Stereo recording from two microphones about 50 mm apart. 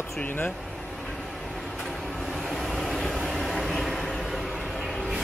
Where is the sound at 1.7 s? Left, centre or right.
Centre.